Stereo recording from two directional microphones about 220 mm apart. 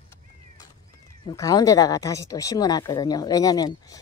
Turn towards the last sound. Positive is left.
turn(degrees=15)  # may be behind; listen again after turning